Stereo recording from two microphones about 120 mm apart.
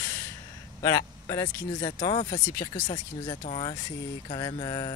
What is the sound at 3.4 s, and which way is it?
Speech, 60° left (ahead or behind).